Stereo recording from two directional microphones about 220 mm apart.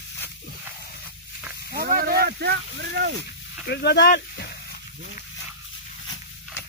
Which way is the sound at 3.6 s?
50° left (ahead or behind).